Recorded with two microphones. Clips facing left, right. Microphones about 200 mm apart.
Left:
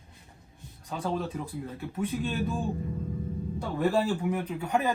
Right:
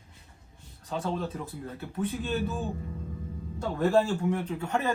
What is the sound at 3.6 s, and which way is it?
A man's voice, 10° left (ahead or behind).